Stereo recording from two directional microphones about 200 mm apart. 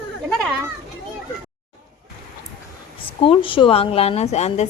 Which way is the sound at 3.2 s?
25° left (ahead or behind).